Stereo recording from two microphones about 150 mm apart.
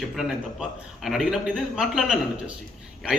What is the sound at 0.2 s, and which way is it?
A man's voice, 5° right (ahead or behind).